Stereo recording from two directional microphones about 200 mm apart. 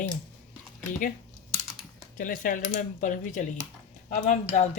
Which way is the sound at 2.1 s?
40° left (ahead or behind).